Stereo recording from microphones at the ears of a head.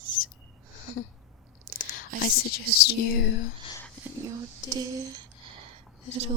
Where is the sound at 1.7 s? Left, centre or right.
Left.